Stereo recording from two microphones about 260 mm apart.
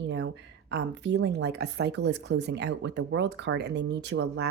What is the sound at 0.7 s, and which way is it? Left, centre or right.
Speech, right.